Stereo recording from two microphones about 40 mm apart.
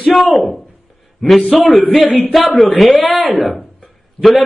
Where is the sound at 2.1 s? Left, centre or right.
Left.